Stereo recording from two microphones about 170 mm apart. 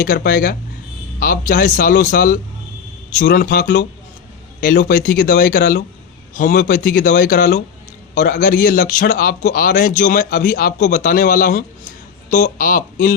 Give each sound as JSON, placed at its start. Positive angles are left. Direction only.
{"t": 0.0, "sound": "a man's voice", "side_deg": 55}
{"t": 3.2, "sound": "a man's voice", "side_deg": 65}
{"t": 4.6, "sound": "a man's voice", "side_deg": 70}
{"t": 8.1, "sound": "a man's voice", "side_deg": 50}